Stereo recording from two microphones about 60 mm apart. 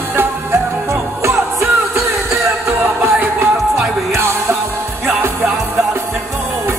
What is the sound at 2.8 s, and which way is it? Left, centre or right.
Music, right.